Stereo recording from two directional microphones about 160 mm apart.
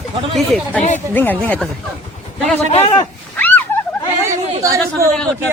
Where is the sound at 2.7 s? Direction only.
30° left (ahead or behind).